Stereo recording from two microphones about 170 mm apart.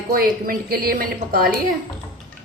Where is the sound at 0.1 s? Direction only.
60° right (ahead or behind).